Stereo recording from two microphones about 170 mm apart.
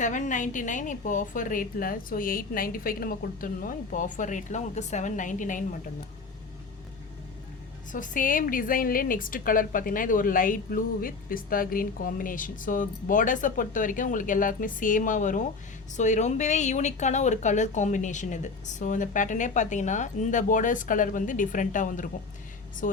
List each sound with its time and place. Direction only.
0.0 s a woman's voice: 45° left (ahead or behind)
7.9 s a woman's voice: 50° left (ahead or behind)